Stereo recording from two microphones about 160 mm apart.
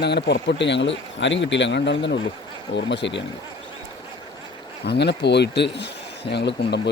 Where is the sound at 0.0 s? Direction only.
90° left.